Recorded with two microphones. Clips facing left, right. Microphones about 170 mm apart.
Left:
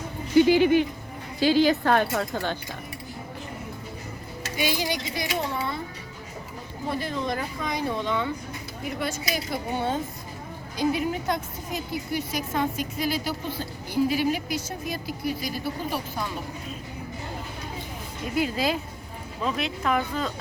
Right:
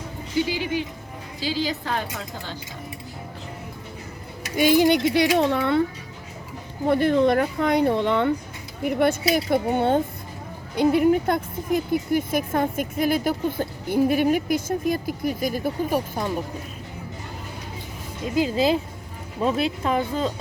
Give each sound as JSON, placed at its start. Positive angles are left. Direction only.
{"t": 0.3, "sound": "a woman's voice", "side_deg": 55}
{"t": 4.5, "sound": "a child's voice", "side_deg": -50}
{"t": 6.8, "sound": "speech", "side_deg": -60}
{"t": 18.3, "sound": "speech", "side_deg": -25}